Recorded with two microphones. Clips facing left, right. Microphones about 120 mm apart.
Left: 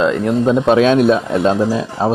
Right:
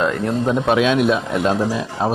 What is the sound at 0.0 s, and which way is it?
Speech, 20° left (ahead or behind).